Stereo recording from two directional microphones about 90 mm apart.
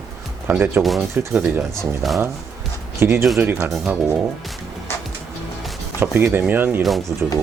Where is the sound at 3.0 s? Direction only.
30° right (ahead or behind).